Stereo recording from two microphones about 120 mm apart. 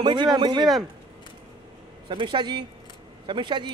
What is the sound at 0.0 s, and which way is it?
Speech, 40° right (ahead or behind).